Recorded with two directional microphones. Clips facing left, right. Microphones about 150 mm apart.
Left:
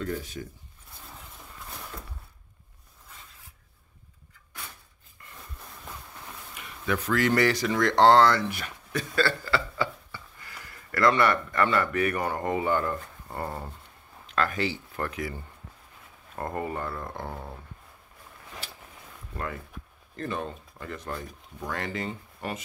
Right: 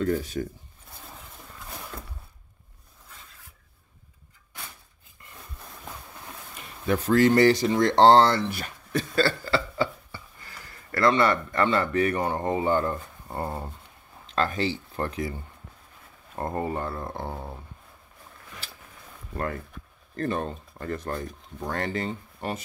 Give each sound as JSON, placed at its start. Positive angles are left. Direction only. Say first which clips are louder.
{"t": 0.0, "sound": "speech", "louder": "right 7 dB", "side_deg": -40}
{"t": 6.5, "sound": "speech", "louder": "right 3 dB", "side_deg": -35}
{"t": 16.3, "sound": "speech", "louder": "right 3 dB", "side_deg": -25}
{"t": 19.3, "sound": "speech", "louder": "right 4 dB", "side_deg": -40}